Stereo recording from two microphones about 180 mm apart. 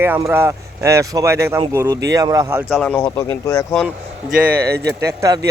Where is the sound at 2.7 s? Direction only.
5° left (ahead or behind).